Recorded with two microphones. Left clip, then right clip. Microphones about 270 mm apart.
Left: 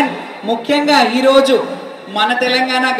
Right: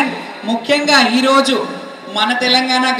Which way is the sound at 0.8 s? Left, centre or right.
Right.